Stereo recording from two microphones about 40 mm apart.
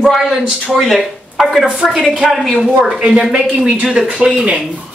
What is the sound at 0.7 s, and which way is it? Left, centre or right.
A woman's voice, centre.